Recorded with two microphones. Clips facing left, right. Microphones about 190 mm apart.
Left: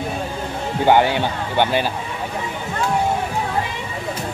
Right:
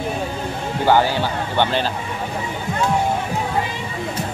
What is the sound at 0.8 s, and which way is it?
Speech, 20° left (ahead or behind).